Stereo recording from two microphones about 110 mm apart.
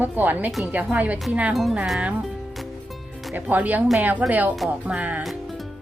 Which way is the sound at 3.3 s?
15° right (ahead or behind).